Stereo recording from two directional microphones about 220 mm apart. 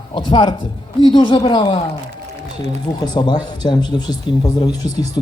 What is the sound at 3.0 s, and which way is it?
Speech, 20° left (ahead or behind).